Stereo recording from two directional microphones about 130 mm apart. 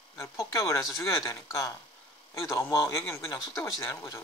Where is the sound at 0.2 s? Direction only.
25° left (ahead or behind).